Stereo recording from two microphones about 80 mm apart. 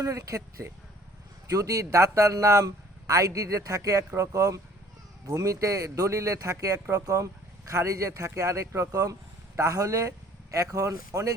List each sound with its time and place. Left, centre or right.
0.0 s speech: right
6.7 s speech: right
7.0 s speech: right